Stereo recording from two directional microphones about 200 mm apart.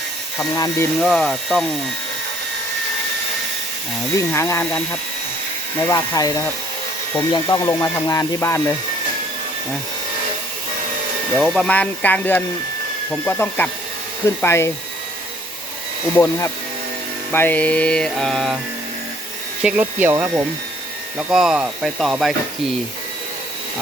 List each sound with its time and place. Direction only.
0.5 s speech: 15° left (ahead or behind)
1.0 s mantra: centre (ahead or behind)
4.3 s speech: 15° left (ahead or behind)
5.9 s speech: 20° left (ahead or behind)
11.3 s speech: centre (ahead or behind)
16.1 s speech: 15° left (ahead or behind)
17.3 s mantra: 10° left (ahead or behind)
19.6 s speech: 10° right (ahead or behind)
21.2 s mantra: 5° right (ahead or behind)